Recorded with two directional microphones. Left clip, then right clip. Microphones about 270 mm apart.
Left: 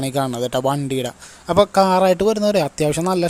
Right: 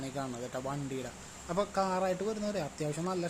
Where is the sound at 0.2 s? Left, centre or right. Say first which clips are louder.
Left 19 dB; left.